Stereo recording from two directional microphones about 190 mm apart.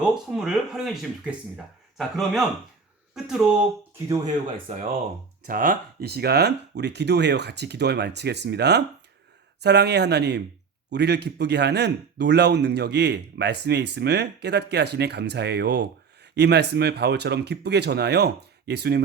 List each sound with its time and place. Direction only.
0.0 s speech: 5° right (ahead or behind)
4.7 s speech: 35° right (ahead or behind)
5.5 s a man's voice: 45° right (ahead or behind)